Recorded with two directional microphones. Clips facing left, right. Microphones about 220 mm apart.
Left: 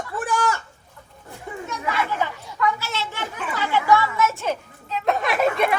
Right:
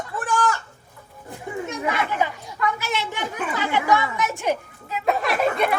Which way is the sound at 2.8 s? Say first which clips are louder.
Right 3 dB; 15° right (ahead or behind).